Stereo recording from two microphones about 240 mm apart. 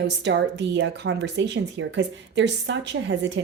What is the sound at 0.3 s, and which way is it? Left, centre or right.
Speech, right.